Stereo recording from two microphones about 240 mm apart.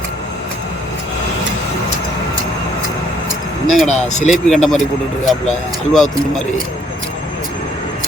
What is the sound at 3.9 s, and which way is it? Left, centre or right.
Speech, left.